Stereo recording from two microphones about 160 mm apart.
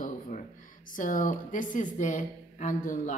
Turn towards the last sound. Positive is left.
turn(degrees=50)  # may be behind; listen again after turning